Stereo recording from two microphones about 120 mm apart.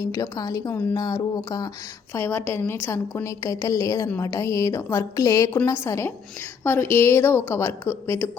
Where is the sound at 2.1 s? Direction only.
20° left (ahead or behind).